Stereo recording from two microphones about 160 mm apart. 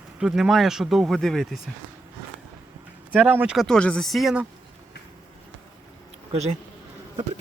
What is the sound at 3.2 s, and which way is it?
Speech, 10° right (ahead or behind).